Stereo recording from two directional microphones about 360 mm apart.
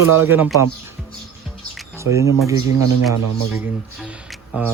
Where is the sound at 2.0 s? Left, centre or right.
Centre.